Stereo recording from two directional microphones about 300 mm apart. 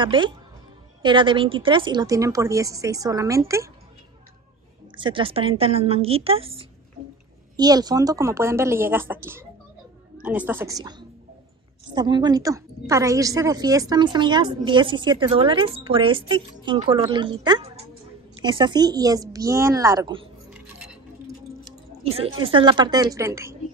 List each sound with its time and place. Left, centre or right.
0.0 s a woman's voice: centre
4.9 s a woman's voice: centre
22.1 s a woman's voice: centre